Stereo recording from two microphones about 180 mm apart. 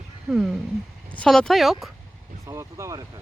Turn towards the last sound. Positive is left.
turn(degrees=-15)  # may be behind; listen again after turning